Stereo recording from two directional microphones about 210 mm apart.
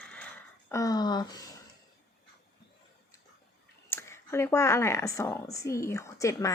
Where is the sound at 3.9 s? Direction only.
10° left (ahead or behind).